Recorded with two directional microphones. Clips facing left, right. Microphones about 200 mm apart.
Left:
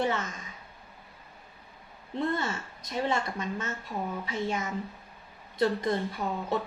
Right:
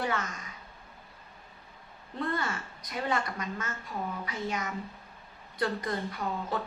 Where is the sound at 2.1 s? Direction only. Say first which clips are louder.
Left 3 dB; 25° left (ahead or behind).